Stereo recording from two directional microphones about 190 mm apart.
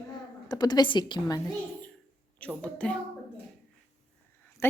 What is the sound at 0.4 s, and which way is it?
Speech, 20° left (ahead or behind).